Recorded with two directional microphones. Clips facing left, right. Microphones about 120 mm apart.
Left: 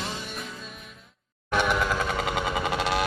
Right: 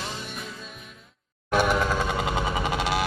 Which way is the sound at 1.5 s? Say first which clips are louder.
Right 2 dB; 35° right (ahead or behind).